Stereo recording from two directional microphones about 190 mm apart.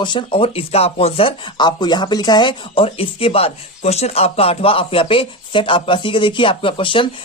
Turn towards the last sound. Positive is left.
turn(degrees=25)  # may be behind; listen again after turning